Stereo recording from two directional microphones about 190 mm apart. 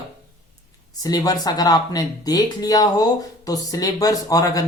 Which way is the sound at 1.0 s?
20° left (ahead or behind).